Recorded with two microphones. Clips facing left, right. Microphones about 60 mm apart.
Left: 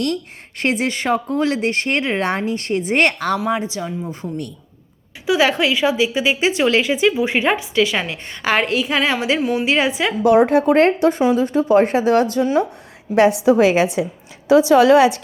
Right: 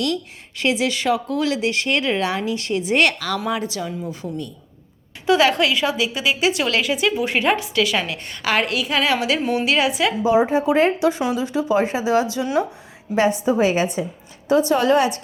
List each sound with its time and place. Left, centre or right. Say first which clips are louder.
0.0 s speech: left 1 dB; left
3.3 s a woman's voice: left 3 dB; left
5.2 s a woman's voice: even; centre
9.4 s speech: left 2 dB; centre
9.6 s a woman's voice: right 1 dB; left
10.2 s speech: left 5 dB; left
13.1 s a woman's voice: left 5 dB; left